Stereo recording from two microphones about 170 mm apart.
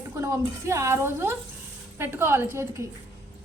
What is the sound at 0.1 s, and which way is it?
A woman's voice, 20° right (ahead or behind).